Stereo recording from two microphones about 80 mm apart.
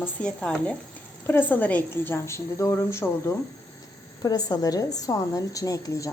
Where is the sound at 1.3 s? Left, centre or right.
Left.